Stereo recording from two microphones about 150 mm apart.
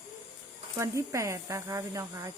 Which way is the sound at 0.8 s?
20° right (ahead or behind).